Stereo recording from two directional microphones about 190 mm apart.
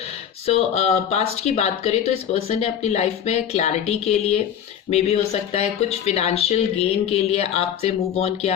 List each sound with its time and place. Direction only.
0.4 s speech: 35° left (ahead or behind)